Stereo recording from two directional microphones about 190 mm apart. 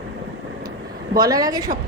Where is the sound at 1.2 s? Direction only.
20° right (ahead or behind).